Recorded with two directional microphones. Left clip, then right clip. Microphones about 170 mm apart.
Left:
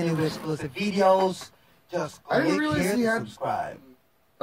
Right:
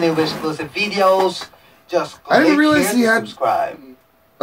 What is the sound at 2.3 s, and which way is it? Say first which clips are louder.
Speech: right 11 dB; 15° left (ahead or behind).